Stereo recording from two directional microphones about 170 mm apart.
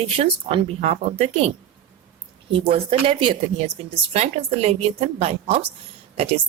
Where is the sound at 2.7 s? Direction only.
35° right (ahead or behind).